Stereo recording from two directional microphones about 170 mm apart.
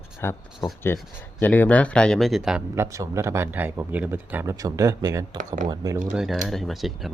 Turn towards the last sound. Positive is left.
turn(degrees=0)  # may be behind; listen again after turning